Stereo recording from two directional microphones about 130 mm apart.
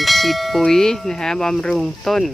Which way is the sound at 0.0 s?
Centre (ahead or behind).